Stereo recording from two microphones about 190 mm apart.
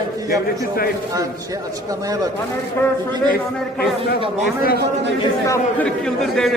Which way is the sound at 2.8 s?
15° left (ahead or behind).